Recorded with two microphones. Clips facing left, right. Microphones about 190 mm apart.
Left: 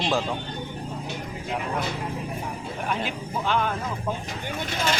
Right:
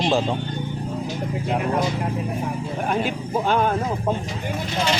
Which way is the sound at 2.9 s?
45° right (ahead or behind).